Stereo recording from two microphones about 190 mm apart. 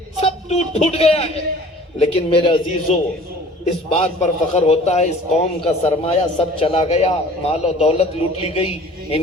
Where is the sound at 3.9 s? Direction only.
30° left (ahead or behind).